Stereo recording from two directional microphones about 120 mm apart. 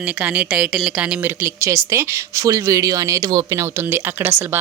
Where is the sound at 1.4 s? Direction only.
20° right (ahead or behind).